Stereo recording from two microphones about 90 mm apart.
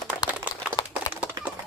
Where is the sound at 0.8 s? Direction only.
50° left (ahead or behind).